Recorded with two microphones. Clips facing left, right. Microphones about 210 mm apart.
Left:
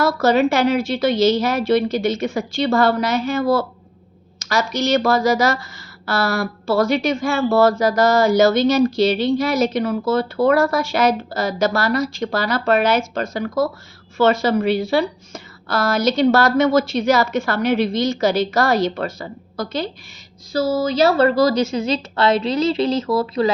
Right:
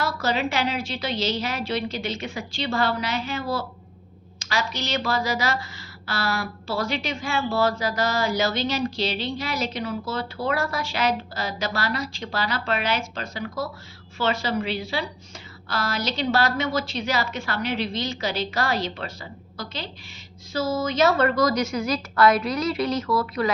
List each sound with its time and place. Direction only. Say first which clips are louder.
0.0 s speech: left 9 dB; 45° left (ahead or behind)
20.5 s a woman's voice: left 6 dB; 35° left (ahead or behind)